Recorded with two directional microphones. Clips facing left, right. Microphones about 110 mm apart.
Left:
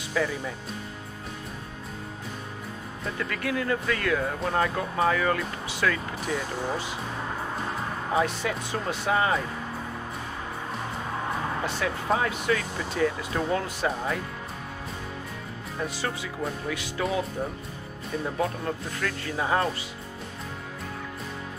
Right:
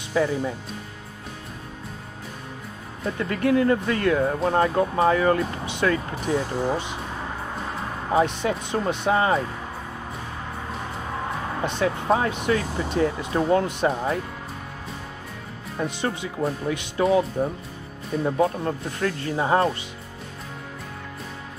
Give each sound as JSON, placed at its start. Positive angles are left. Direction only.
{"t": 0.1, "sound": "speech", "side_deg": -30}
{"t": 3.2, "sound": "speech", "side_deg": -30}
{"t": 8.1, "sound": "speech", "side_deg": -25}
{"t": 11.6, "sound": "speech", "side_deg": -20}
{"t": 15.8, "sound": "speech", "side_deg": -20}
{"t": 18.4, "sound": "speech", "side_deg": -30}